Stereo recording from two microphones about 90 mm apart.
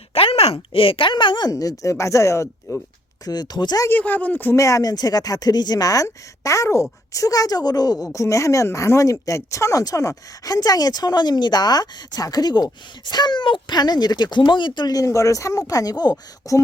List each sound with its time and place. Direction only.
0.1 s speech: 90° left; by 1.5 s 60° left (ahead or behind)
1.5 s speech: 40° left (ahead or behind)
3.2 s speech: 50° left (ahead or behind)
3.8 s speech: 20° left (ahead or behind)
4.5 s speech: 35° left (ahead or behind); by 13.7 s 65° left (ahead or behind)
13.7 s speech: 50° left (ahead or behind)